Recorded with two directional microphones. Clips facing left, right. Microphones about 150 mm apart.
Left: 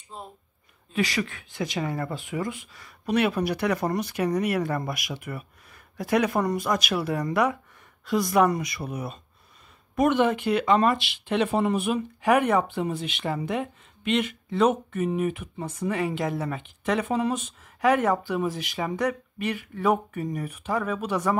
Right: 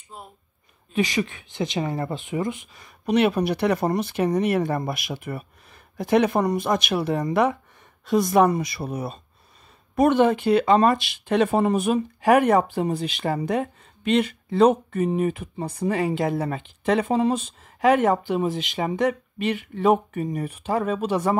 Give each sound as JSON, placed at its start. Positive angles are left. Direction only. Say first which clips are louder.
{"t": 0.9, "sound": "speech", "louder": "right 3 dB", "side_deg": -20}